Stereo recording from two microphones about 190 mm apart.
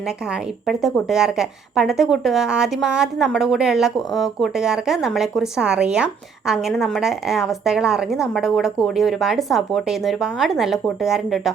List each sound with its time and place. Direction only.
0.7 s a woman's voice: centre (ahead or behind)